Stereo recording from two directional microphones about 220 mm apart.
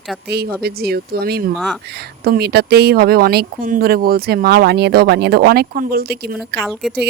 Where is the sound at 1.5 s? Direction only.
Centre (ahead or behind).